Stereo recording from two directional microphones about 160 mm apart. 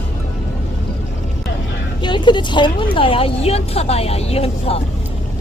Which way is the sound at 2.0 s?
30° left (ahead or behind).